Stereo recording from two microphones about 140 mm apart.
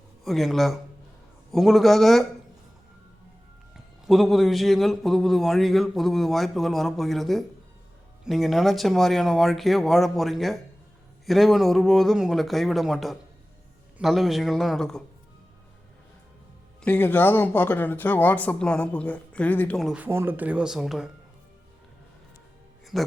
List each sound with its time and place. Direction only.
0.3 s a man's voice: centre (ahead or behind)
4.0 s a man's voice: centre (ahead or behind)
16.8 s speech: 15° left (ahead or behind)
19.7 s a man's voice: centre (ahead or behind)
20.0 s speech: 15° right (ahead or behind)
22.9 s a man's voice: centre (ahead or behind)